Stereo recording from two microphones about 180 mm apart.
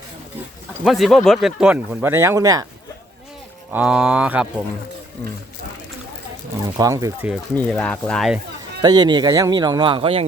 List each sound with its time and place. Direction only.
0.9 s speech: centre (ahead or behind); by 2.6 s 20° right (ahead or behind)
3.7 s speech: 5° right (ahead or behind)
6.7 s speech: 20° right (ahead or behind)
7.5 s speech: 10° left (ahead or behind)
8.8 s a man's voice: 25° right (ahead or behind)